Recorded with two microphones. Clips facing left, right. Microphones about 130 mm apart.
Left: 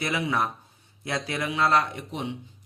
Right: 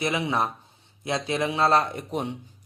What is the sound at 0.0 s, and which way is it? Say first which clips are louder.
A man's voice: right 1 dB; 25° right (ahead or behind).